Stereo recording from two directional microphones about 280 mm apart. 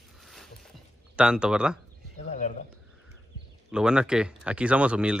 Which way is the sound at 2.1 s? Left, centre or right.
Left.